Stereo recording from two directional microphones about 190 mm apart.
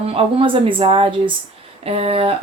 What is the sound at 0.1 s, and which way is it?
Speech, 30° right (ahead or behind).